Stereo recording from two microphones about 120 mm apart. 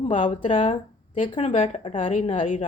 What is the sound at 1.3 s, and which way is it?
Speech, 70° left (ahead or behind).